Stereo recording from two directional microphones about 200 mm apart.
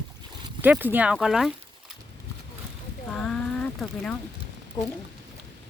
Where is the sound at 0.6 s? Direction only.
10° right (ahead or behind).